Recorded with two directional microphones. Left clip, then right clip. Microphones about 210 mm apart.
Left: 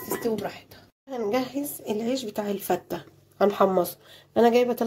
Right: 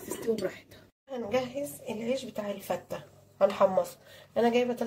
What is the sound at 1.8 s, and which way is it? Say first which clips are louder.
Speech: left 6 dB; 50° left (ahead or behind).